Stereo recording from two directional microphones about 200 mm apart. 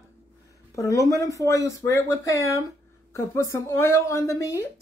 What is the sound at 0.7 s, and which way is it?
Speech, 15° left (ahead or behind).